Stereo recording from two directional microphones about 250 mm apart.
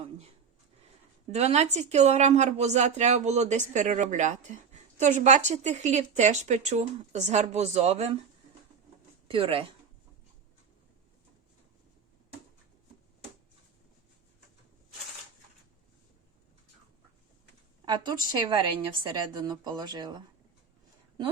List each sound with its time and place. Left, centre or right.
1.3 s speech: right
9.2 s speech: right
17.8 s a woman's voice: centre